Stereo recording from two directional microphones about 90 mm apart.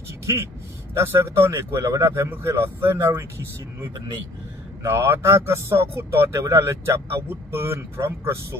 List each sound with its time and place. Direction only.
0.9 s speech: 30° right (ahead or behind)
4.9 s speech: 30° right (ahead or behind)